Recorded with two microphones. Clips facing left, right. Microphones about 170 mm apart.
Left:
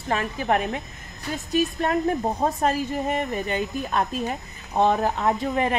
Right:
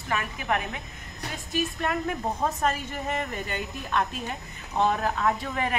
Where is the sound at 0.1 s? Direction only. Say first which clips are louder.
Left 5 dB; 35° left (ahead or behind).